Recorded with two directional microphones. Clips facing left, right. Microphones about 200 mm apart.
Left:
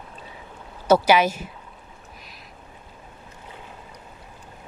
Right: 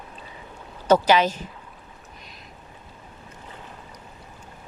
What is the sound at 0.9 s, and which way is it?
Speech, 10° left (ahead or behind).